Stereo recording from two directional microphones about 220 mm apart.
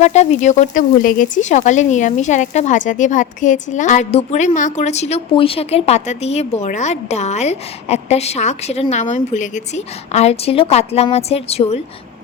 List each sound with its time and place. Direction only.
0.0 s speech: 30° left (ahead or behind)